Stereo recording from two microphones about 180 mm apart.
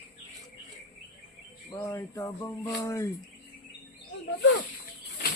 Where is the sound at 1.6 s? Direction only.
20° left (ahead or behind).